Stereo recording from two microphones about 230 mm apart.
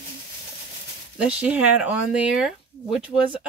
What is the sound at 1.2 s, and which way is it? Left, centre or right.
Speech, centre.